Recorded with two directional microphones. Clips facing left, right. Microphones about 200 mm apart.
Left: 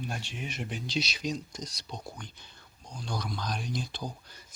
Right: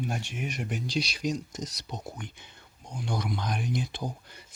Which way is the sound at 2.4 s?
20° right (ahead or behind).